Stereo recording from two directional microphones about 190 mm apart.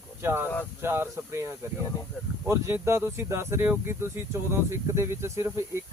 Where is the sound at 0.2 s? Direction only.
10° right (ahead or behind).